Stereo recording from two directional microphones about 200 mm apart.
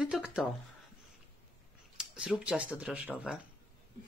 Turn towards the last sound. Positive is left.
turn(degrees=-5)  # may be behind; listen again after turning